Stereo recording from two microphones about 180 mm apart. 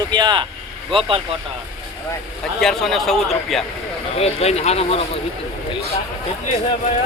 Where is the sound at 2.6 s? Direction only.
Centre (ahead or behind).